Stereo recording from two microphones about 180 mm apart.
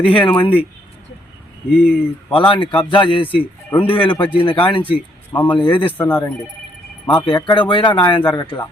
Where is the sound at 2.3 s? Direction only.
30° left (ahead or behind).